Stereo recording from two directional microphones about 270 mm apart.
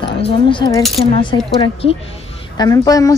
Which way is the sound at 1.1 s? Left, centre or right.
Centre.